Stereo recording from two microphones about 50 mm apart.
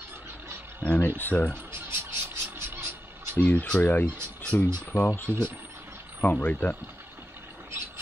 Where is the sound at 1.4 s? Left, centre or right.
Right.